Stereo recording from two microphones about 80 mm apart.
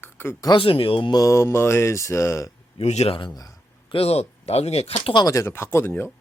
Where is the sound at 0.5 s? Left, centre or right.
Left.